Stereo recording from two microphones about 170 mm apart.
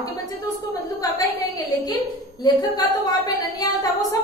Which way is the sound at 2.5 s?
25° left (ahead or behind).